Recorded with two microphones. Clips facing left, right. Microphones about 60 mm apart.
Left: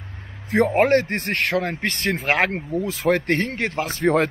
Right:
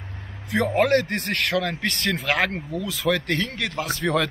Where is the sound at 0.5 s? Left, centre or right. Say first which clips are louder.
Left 3 dB; left.